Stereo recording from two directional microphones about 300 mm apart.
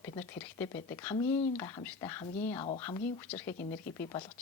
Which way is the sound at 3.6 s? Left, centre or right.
Left.